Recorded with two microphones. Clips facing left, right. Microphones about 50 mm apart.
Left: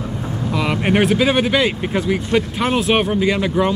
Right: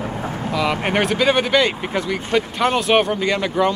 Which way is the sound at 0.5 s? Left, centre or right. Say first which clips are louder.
Left 2 dB; centre.